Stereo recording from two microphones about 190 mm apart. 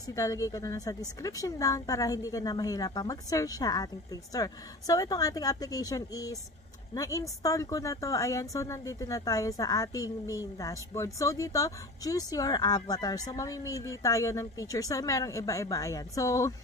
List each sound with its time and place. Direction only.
0.1 s a woman's voice: 20° left (ahead or behind)